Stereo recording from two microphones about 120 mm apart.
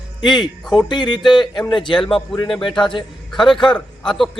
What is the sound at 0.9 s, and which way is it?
Music, 40° left (ahead or behind).